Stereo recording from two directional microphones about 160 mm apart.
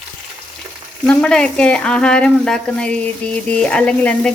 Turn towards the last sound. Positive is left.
turn(degrees=5)  # may be behind; listen again after turning